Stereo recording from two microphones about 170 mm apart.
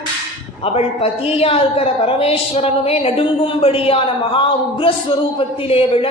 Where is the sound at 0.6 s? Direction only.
35° left (ahead or behind).